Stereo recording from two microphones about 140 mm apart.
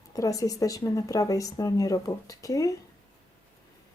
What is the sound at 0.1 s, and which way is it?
Speech, 25° left (ahead or behind).